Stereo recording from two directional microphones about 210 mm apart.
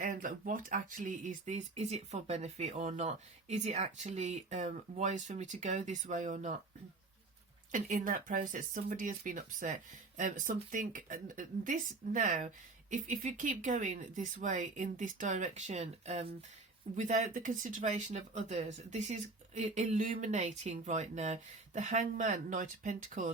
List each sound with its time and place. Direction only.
0.0 s speech: 40° right (ahead or behind)
7.7 s speech: 40° right (ahead or behind)